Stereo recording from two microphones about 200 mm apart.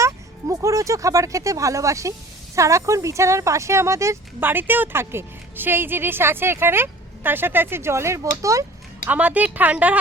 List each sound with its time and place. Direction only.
0.0 s speech: 15° right (ahead or behind)